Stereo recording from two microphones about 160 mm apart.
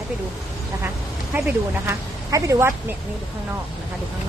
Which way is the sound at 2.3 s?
20° right (ahead or behind).